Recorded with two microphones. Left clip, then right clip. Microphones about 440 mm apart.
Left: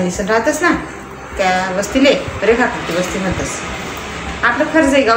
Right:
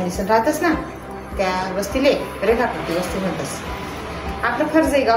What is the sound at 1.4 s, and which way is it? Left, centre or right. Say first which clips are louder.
A woman's voice: left 6 dB; right.